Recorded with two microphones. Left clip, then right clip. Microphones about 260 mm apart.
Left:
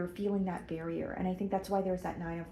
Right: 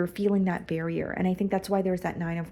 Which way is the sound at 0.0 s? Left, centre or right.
Right.